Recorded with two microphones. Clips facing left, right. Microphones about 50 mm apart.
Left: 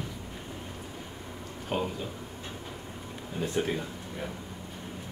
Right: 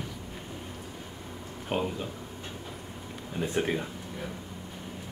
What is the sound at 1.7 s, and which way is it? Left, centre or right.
Speech, centre.